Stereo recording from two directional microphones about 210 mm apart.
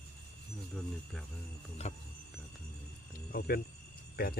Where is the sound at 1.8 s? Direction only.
30° left (ahead or behind).